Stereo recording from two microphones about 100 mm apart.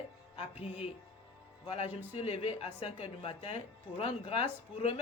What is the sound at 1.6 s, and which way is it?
Speech, 70° left (ahead or behind).